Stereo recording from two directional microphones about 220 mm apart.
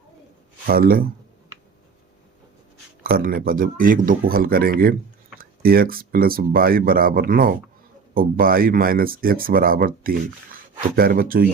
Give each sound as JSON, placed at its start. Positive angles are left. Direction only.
{"t": 0.7, "sound": "speech", "side_deg": -40}
{"t": 3.0, "sound": "speech", "side_deg": -40}